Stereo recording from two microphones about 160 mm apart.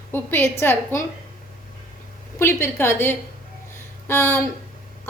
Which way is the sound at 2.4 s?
15° left (ahead or behind).